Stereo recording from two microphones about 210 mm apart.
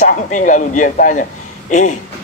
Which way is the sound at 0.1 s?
35° left (ahead or behind).